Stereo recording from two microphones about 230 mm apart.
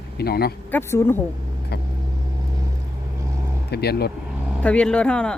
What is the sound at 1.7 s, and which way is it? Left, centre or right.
Speech, left.